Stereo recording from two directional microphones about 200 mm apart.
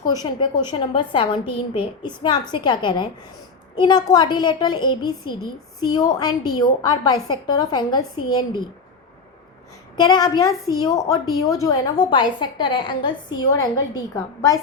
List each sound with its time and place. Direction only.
0.1 s a woman's voice: 20° left (ahead or behind)
10.0 s a woman's voice: 20° left (ahead or behind)